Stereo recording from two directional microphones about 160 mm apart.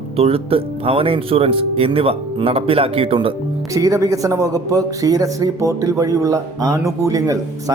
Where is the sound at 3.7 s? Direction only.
20° right (ahead or behind).